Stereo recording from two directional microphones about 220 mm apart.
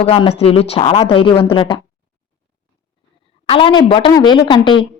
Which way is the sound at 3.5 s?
25° left (ahead or behind).